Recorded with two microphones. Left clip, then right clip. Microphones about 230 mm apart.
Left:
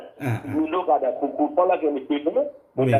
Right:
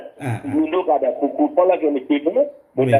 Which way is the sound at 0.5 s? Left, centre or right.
Right.